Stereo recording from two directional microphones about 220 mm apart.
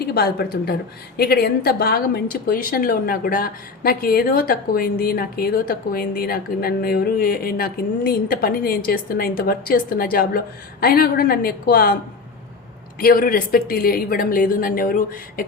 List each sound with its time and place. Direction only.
0.1 s a woman's voice: 45° left (ahead or behind)
13.0 s speech: 40° left (ahead or behind)